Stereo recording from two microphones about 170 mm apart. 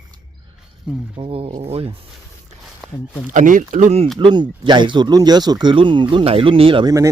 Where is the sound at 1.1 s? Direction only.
35° right (ahead or behind).